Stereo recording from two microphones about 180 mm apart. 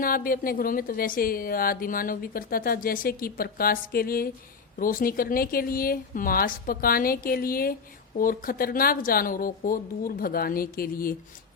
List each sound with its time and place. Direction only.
0.0 s speech: 50° left (ahead or behind)